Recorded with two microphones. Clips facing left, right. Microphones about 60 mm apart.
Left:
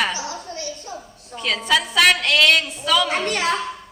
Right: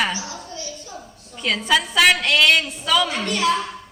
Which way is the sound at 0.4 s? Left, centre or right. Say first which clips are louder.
Left 3 dB; left.